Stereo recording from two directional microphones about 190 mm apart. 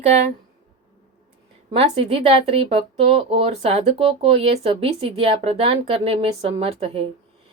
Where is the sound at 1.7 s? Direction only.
30° right (ahead or behind).